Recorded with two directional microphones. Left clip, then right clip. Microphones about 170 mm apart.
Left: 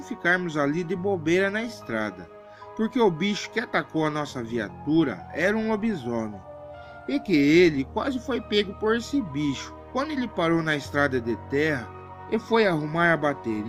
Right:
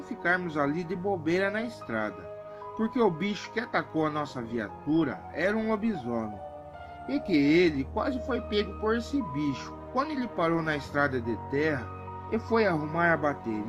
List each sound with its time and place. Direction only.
0.2 s speech: 35° left (ahead or behind)